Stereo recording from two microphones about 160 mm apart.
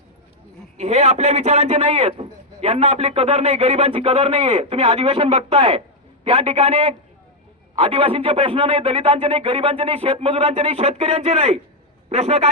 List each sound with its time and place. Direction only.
0.8 s a man's voice: 40° right (ahead or behind)